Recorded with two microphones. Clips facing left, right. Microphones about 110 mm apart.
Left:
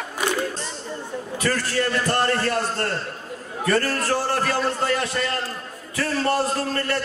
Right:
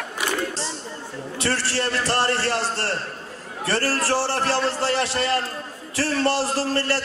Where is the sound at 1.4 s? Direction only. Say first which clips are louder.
Left 1 dB; 30° right (ahead or behind).